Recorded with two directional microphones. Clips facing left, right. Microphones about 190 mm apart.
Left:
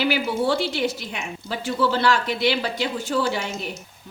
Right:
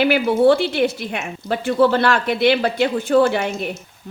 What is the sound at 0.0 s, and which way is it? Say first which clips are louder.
Speech: right 8 dB; 55° right (ahead or behind).